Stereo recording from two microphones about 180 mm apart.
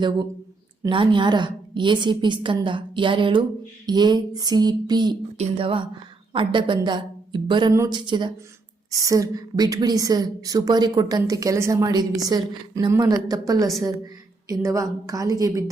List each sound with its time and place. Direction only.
0.8 s a woman's voice: 25° right (ahead or behind)